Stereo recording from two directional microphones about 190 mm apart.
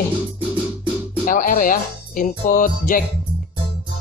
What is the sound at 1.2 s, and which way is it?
Speech, 45° left (ahead or behind).